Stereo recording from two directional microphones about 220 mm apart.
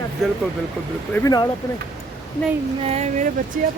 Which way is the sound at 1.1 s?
15° left (ahead or behind).